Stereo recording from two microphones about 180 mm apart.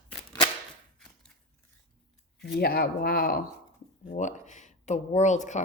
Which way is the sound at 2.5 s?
60° left (ahead or behind).